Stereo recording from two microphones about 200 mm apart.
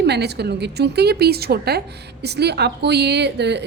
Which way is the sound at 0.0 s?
55° right (ahead or behind).